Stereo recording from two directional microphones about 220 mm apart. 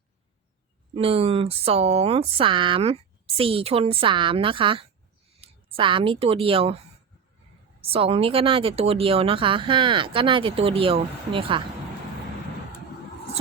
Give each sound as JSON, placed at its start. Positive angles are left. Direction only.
{"t": 0.9, "sound": "speech", "side_deg": -25}
{"t": 7.8, "sound": "speech", "side_deg": -25}